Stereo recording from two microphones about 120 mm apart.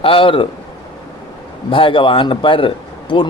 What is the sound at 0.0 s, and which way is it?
Speech, 50° left (ahead or behind).